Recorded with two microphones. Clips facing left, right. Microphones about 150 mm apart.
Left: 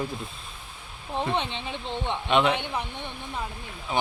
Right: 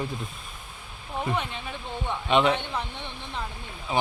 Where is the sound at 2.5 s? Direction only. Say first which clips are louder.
Left 1 dB; 15° left (ahead or behind).